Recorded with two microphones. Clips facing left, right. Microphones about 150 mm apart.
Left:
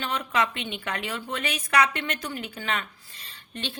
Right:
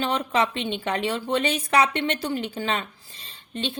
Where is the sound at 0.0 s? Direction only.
30° right (ahead or behind).